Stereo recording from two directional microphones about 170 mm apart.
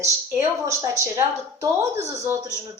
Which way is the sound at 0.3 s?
15° right (ahead or behind).